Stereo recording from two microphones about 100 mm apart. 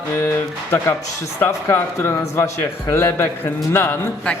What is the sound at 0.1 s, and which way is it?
A man's voice, 20° left (ahead or behind).